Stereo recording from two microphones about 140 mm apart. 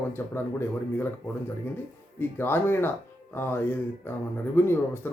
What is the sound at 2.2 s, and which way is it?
Speech, 15° left (ahead or behind).